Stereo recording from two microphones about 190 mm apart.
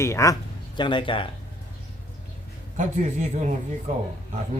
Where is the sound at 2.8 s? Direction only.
40° right (ahead or behind).